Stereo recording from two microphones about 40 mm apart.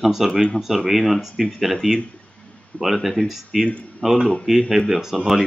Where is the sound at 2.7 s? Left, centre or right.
Left.